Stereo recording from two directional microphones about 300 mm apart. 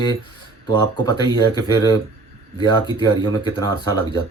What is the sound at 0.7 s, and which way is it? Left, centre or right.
Speech, centre.